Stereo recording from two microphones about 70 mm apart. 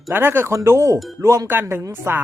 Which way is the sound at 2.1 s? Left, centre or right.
Right.